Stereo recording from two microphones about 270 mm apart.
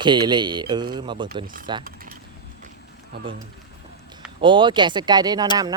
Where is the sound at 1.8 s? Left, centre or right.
Right.